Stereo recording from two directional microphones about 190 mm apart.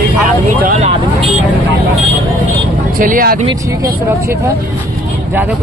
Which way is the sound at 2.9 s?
45° right (ahead or behind).